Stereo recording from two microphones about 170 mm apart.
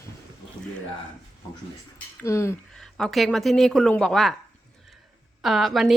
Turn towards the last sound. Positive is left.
turn(degrees=0)  # may be behind; listen again after turning